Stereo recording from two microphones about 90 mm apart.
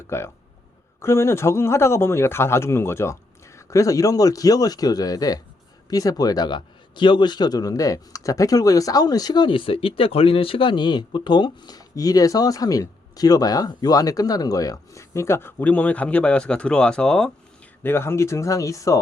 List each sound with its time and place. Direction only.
0.1 s a man's voice: 30° left (ahead or behind); by 17.3 s 10° left (ahead or behind)
17.8 s speech: 25° left (ahead or behind)